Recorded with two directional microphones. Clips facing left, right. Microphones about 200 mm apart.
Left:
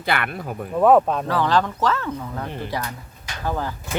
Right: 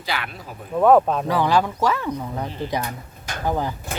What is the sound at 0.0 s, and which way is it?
Speech, 55° left (ahead or behind).